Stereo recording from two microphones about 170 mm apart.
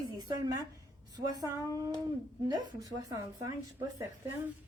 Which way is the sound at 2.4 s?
20° right (ahead or behind).